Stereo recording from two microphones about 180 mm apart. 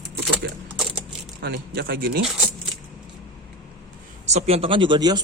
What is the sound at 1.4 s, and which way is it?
Speech, 60° right (ahead or behind).